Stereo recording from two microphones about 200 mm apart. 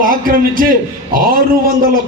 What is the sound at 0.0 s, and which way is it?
Speech, 45° right (ahead or behind).